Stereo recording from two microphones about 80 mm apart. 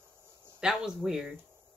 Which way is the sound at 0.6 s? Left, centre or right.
Centre.